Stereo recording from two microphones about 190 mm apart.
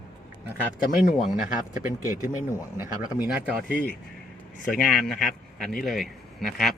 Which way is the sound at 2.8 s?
10° right (ahead or behind).